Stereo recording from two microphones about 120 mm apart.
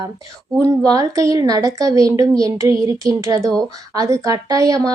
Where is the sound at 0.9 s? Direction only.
30° right (ahead or behind).